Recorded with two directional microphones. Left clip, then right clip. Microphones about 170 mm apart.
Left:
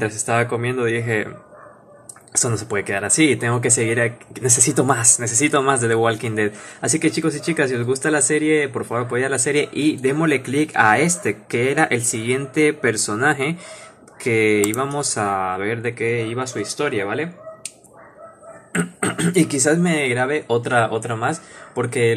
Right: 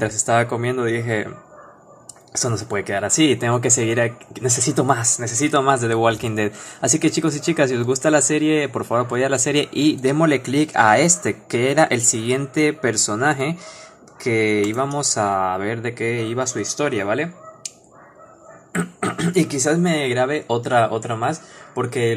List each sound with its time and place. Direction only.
0.0 s speech: 20° right (ahead or behind)
2.7 s speech: 10° right (ahead or behind)
4.5 s speech: centre (ahead or behind); by 17.3 s 25° right (ahead or behind)
18.7 s speech: centre (ahead or behind)
19.8 s speech: 15° right (ahead or behind)